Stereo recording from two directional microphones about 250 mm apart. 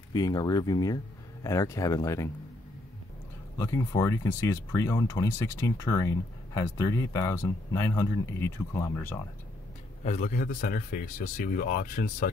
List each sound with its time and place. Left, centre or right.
0.1 s speech: centre
3.5 s speech: centre
10.0 s speech: left